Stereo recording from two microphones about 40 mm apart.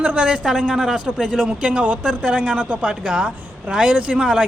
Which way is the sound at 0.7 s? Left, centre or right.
Centre.